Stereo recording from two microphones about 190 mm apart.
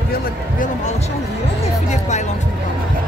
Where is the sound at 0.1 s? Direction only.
45° left (ahead or behind).